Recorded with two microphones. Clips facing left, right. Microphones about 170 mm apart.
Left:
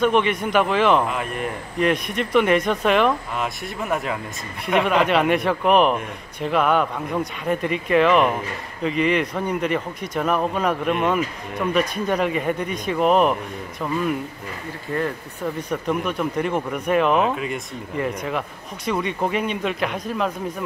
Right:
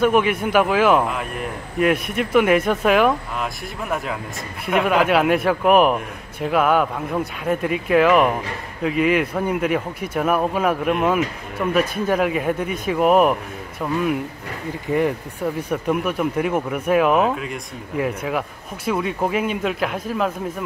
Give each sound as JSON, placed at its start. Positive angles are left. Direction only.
{"t": 0.0, "sound": "a man's voice", "side_deg": -5}